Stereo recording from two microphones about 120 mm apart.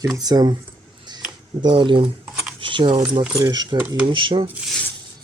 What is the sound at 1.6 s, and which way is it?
Speech, 45° right (ahead or behind).